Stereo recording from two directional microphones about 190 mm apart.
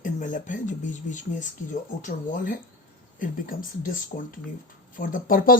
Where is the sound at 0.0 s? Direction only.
40° left (ahead or behind).